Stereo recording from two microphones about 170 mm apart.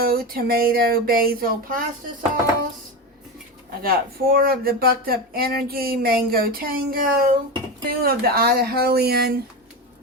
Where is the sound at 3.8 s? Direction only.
60° right (ahead or behind).